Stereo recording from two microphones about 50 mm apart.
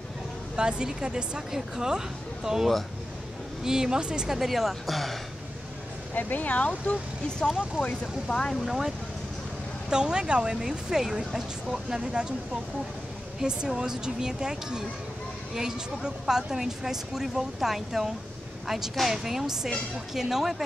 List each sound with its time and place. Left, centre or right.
0.6 s speech: centre
6.1 s speech: left
7.2 s speech: centre
8.5 s speech: centre
9.8 s speech: centre
13.4 s speech: centre